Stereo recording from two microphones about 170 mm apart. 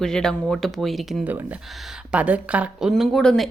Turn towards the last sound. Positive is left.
turn(degrees=0)  # may be behind; listen again after turning